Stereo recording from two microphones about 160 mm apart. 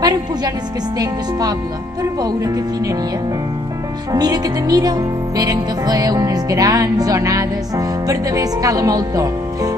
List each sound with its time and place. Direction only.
0.0 s music: 25° right (ahead or behind)
0.9 s speech: 25° right (ahead or behind)
4.1 s speech: 25° right (ahead or behind)